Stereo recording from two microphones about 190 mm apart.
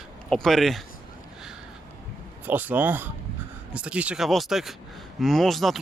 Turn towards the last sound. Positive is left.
turn(degrees=0)  # may be behind; listen again after turning